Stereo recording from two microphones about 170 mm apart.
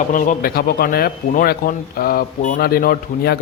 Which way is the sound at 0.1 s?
50° left (ahead or behind).